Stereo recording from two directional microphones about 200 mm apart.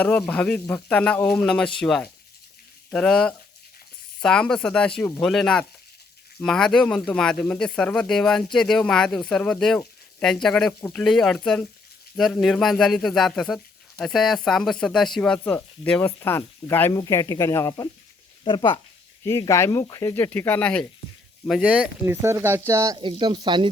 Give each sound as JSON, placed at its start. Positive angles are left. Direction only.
{"t": 0.0, "sound": "speech", "side_deg": 5}